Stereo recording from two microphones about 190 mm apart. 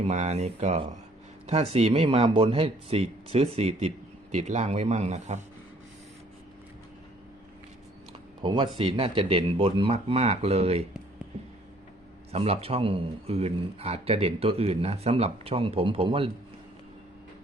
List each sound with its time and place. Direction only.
0.0 s speech: 35° right (ahead or behind)
8.4 s speech: 25° right (ahead or behind)
12.3 s speech: 30° right (ahead or behind)